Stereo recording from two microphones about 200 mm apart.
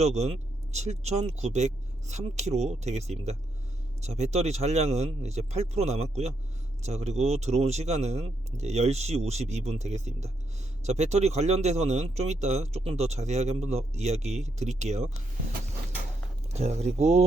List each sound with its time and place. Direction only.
0.0 s speech: 35° right (ahead or behind)
16.5 s speech: 30° right (ahead or behind)